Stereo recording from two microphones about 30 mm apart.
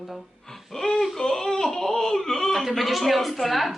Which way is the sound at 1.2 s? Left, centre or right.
Centre.